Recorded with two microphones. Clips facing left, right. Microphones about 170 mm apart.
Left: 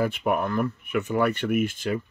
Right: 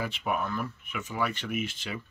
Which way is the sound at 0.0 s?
55° left (ahead or behind).